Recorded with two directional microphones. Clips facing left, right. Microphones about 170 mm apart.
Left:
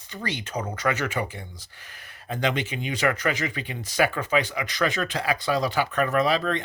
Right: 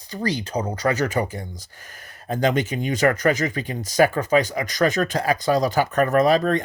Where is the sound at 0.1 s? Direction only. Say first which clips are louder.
Right 6 dB; 35° right (ahead or behind).